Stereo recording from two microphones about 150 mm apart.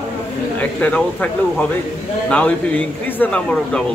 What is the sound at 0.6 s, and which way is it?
A man's voice, 10° left (ahead or behind).